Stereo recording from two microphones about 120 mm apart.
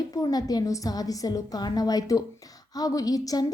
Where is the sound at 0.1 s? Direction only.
30° left (ahead or behind).